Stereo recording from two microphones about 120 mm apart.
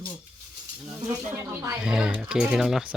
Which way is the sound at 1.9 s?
5° right (ahead or behind).